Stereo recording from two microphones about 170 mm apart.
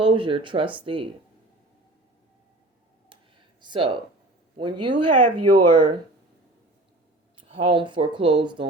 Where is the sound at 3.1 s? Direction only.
25° right (ahead or behind).